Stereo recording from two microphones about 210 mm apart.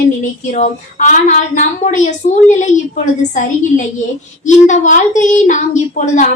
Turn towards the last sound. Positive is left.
turn(degrees=35)  # may be behind; listen again after turning